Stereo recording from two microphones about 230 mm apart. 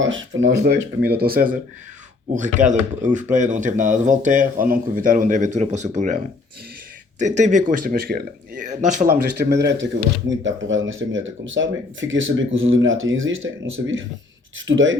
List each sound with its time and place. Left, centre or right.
0.0 s speech: right
9.3 s speech: right